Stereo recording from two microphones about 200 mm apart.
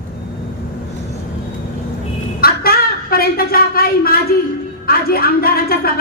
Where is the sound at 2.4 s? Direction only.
50° left (ahead or behind).